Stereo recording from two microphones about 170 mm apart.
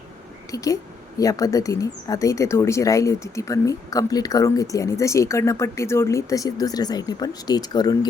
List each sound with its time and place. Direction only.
0.5 s speech: 20° left (ahead or behind)